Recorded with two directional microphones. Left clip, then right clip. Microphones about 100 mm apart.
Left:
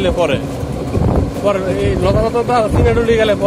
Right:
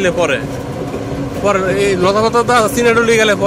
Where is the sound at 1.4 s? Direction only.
25° right (ahead or behind).